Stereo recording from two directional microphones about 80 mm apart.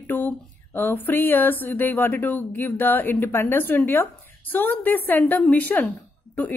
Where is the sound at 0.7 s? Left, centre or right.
Left.